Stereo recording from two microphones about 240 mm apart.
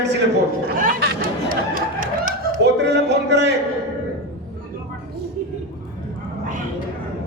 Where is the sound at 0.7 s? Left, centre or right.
Right.